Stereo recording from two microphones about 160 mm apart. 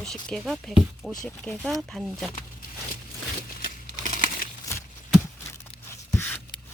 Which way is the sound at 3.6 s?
60° left (ahead or behind).